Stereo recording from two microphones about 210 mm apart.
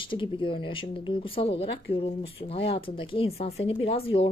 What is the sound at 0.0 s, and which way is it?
Speech, 25° left (ahead or behind).